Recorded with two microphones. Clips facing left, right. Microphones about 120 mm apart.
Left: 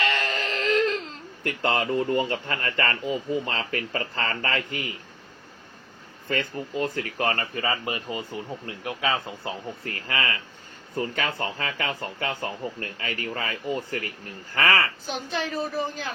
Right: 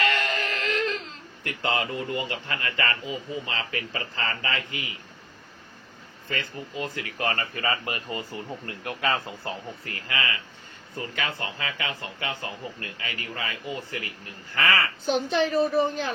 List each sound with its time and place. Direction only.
0.0 s a sound: 30° left (ahead or behind)
1.5 s speech: 45° left (ahead or behind)
6.2 s speech: 45° left (ahead or behind); by 9.1 s 15° left (ahead or behind)
10.1 s speech: 35° left (ahead or behind)
15.3 s speech: 25° right (ahead or behind)